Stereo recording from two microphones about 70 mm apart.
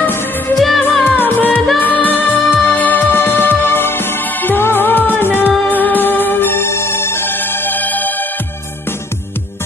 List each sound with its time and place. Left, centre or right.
0.0 s music: left
0.6 s music: centre
1.0 s music: left